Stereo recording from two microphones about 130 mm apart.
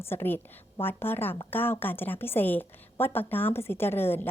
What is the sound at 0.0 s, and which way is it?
A woman's voice, 15° left (ahead or behind).